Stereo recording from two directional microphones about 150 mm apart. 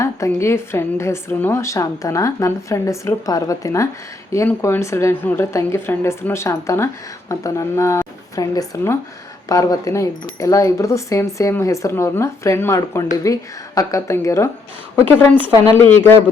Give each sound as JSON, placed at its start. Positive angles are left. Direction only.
{"t": 0.0, "sound": "a woman's voice", "side_deg": 20}